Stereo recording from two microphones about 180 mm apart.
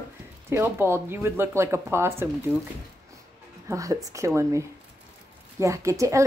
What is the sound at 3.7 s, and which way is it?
A woman's voice, 20° right (ahead or behind).